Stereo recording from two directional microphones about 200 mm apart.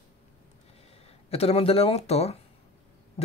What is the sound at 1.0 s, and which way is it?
Speech, 30° left (ahead or behind).